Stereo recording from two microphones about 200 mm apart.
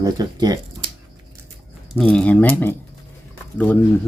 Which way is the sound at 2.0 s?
5° left (ahead or behind).